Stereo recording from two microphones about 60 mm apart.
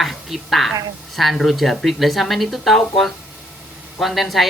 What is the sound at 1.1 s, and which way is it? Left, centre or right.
Speech, centre.